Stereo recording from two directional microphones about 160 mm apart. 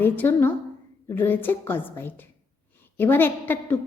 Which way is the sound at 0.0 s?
15° left (ahead or behind).